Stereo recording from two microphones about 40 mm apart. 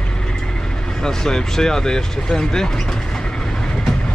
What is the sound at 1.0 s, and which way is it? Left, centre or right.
Speech, centre.